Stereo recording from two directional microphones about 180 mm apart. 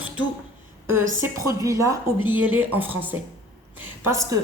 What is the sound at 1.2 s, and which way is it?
A woman's voice, 15° right (ahead or behind).